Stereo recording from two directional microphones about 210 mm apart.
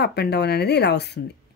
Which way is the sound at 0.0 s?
50° left (ahead or behind).